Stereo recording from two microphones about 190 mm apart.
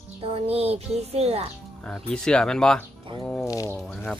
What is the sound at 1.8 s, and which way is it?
Speech, 5° left (ahead or behind).